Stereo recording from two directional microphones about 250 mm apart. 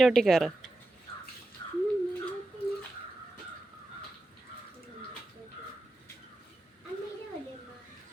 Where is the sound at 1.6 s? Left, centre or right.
Centre.